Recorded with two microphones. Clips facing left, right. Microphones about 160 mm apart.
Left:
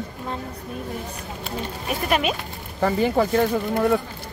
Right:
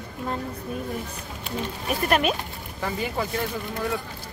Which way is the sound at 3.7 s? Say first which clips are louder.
Left 9 dB; 50° left (ahead or behind).